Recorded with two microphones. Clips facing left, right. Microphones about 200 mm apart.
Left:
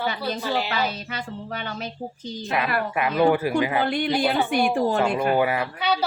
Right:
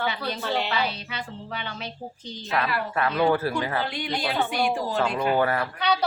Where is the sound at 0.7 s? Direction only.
45° left (ahead or behind).